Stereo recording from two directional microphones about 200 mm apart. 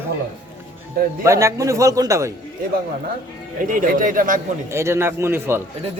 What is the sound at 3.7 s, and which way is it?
Speech, 40° right (ahead or behind).